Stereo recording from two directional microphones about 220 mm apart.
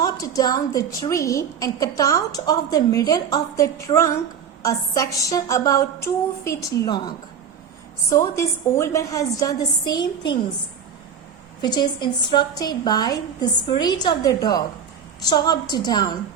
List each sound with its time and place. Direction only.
0.0 s a woman's voice: 15° left (ahead or behind)
8.1 s a woman's voice: 10° left (ahead or behind)
11.6 s a woman's voice: 20° left (ahead or behind)